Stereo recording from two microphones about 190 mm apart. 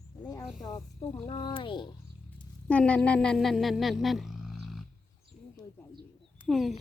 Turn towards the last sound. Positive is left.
turn(degrees=0)  # may be behind; listen again after turning